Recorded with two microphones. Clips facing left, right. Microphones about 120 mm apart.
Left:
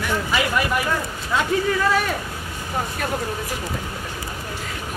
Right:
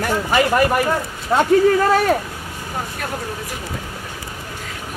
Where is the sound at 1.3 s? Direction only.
35° right (ahead or behind).